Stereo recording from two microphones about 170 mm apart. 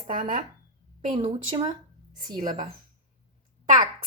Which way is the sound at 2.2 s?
50° right (ahead or behind).